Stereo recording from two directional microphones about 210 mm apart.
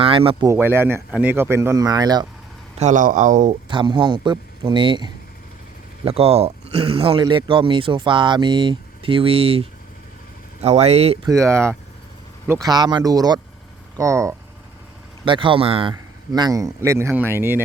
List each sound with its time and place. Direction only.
0.0 s speech: 25° right (ahead or behind)
0.5 s a man's voice: 10° right (ahead or behind)
2.7 s speech: 35° right (ahead or behind)
3.7 s speech: 25° right (ahead or behind)
11.3 s a man's voice: 15° right (ahead or behind)